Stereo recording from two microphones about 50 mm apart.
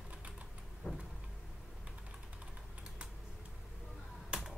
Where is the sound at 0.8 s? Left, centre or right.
Left.